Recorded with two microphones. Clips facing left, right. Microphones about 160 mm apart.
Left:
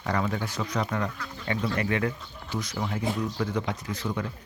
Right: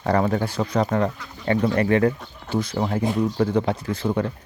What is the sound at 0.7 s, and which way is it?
Speech, 45° right (ahead or behind).